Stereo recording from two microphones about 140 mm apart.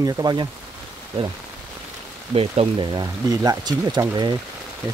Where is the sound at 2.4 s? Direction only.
45° right (ahead or behind).